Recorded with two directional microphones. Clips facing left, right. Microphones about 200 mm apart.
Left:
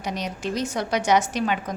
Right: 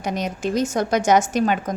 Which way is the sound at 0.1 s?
50° right (ahead or behind).